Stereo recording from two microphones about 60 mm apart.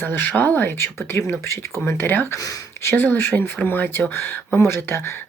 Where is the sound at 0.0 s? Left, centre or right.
Left.